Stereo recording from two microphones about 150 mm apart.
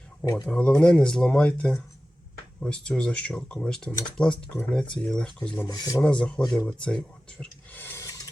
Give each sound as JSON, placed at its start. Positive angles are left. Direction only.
{"t": 0.4, "sound": "speech", "side_deg": 10}
{"t": 5.6, "sound": "speech", "side_deg": 25}
{"t": 6.0, "sound": "speech", "side_deg": 5}